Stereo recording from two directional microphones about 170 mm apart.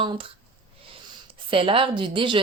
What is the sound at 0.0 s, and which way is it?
Speech, 30° right (ahead or behind).